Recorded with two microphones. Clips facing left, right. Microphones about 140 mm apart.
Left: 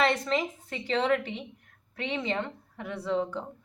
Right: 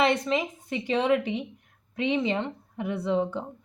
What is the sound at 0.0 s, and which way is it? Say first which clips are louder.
A woman's voice: right 2 dB; 15° right (ahead or behind).